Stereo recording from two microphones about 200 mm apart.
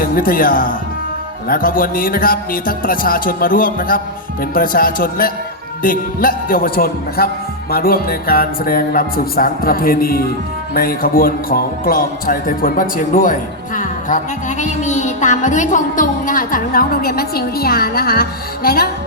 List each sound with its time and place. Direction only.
0.0 s music: 45° left (ahead or behind)
14.6 s music: 35° left (ahead or behind)